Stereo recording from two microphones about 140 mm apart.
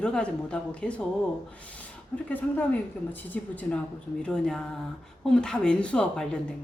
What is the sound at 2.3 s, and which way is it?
A woman's voice, 10° left (ahead or behind).